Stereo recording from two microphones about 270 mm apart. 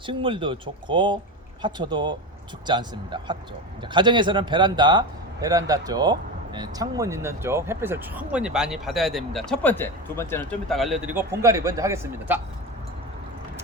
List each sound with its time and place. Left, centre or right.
0.0 s a man's voice: centre